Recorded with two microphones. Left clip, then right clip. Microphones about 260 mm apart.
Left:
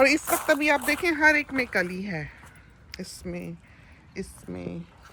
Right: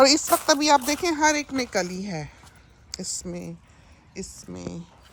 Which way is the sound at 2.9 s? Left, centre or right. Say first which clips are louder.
Right 6 dB; right.